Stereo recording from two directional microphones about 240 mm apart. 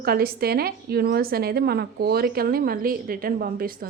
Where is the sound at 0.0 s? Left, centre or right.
Right.